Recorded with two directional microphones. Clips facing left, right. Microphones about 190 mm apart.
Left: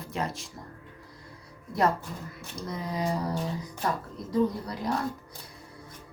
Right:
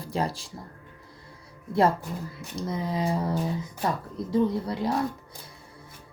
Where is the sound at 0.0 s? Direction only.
35° right (ahead or behind).